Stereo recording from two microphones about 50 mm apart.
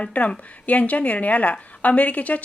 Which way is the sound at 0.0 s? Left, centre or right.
Left.